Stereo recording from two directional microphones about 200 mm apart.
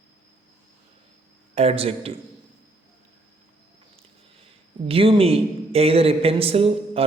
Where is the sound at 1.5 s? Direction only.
30° right (ahead or behind).